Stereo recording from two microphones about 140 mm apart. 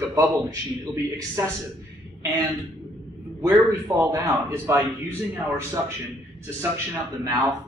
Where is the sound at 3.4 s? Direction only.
25° right (ahead or behind).